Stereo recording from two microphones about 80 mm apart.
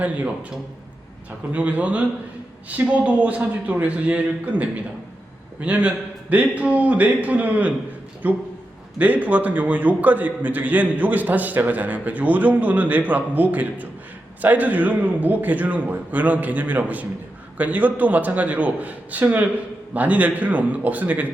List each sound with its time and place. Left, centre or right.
0.0 s a man's voice: centre